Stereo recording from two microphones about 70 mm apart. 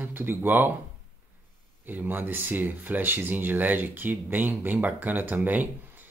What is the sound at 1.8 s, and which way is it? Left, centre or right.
Speech, right.